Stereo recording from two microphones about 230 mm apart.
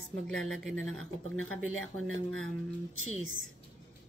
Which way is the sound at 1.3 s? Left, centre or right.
Left.